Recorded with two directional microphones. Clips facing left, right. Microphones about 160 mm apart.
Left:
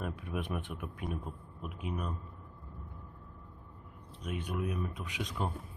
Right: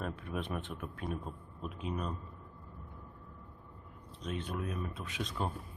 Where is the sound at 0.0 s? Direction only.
10° left (ahead or behind).